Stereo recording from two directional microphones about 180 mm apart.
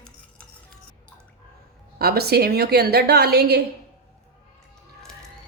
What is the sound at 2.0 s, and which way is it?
A woman's voice, 60° right (ahead or behind).